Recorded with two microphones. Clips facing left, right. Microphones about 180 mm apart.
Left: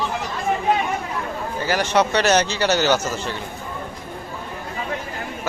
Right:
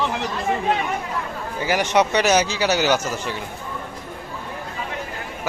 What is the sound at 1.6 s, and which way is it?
A man's voice, 15° right (ahead or behind).